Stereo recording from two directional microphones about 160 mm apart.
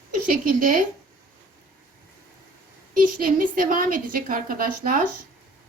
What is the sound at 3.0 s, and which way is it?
A woman's voice, 60° right (ahead or behind).